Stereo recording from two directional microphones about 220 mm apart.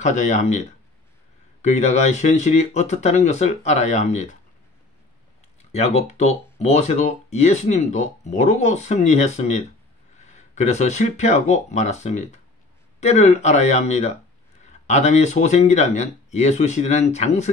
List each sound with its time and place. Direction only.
0.0 s speech: 35° left (ahead or behind)
5.7 s speech: 30° left (ahead or behind)